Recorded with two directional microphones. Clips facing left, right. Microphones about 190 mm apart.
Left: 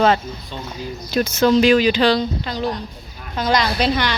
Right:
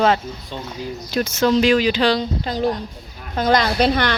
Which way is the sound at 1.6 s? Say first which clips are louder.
Left 2 dB; 5° left (ahead or behind).